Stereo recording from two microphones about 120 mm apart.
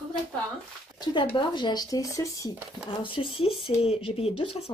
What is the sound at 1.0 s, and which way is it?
Speech, 40° left (ahead or behind).